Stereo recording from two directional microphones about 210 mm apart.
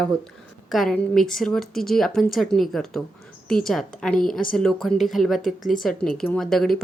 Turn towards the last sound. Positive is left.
turn(degrees=0)  # may be behind; listen again after turning